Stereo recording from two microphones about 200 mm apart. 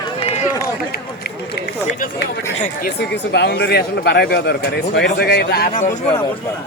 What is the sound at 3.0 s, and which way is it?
A man's voice, 55° left (ahead or behind).